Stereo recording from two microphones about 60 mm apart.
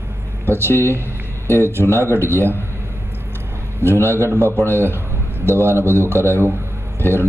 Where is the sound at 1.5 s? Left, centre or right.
Right.